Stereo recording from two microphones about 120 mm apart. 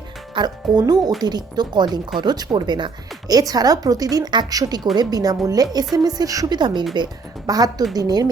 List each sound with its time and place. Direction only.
0.3 s speech: 35° right (ahead or behind)